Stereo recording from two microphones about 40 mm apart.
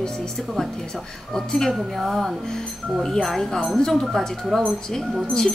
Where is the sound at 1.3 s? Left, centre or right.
Centre.